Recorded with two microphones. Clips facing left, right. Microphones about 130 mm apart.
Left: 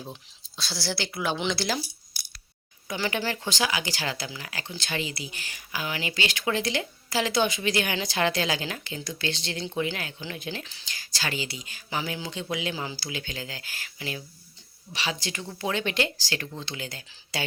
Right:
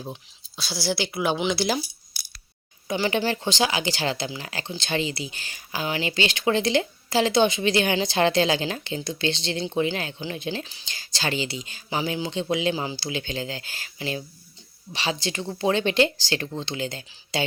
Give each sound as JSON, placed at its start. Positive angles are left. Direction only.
{"t": 0.1, "sound": "speech", "side_deg": -10}
{"t": 2.8, "sound": "speech", "side_deg": -25}